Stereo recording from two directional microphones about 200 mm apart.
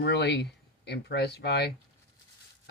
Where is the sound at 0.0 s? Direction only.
55° left (ahead or behind).